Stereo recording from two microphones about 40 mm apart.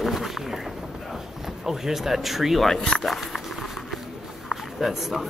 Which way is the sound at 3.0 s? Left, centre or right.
Centre.